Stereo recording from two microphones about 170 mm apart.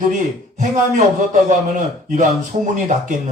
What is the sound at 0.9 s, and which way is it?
A man's voice, 50° right (ahead or behind).